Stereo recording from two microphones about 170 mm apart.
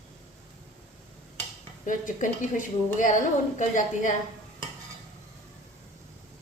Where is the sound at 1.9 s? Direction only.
50° left (ahead or behind).